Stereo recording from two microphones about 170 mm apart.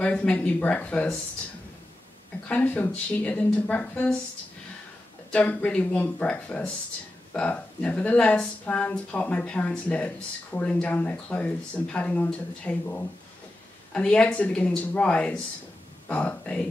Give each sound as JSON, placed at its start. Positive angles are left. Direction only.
{"t": 0.0, "sound": "speech", "side_deg": 5}
{"t": 2.4, "sound": "speech", "side_deg": 10}
{"t": 5.3, "sound": "speech", "side_deg": 10}